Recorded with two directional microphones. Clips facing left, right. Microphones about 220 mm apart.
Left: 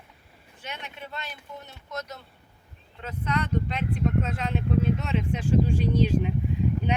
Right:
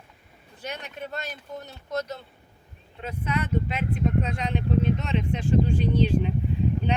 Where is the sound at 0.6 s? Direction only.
40° right (ahead or behind).